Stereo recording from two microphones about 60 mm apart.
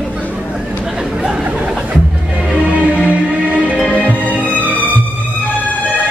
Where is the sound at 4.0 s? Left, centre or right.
Left.